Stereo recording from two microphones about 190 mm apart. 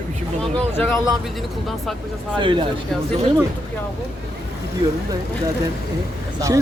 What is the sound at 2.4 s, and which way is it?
Speech, 25° right (ahead or behind).